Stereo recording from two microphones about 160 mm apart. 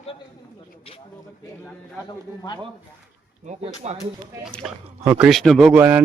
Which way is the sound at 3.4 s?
45° right (ahead or behind).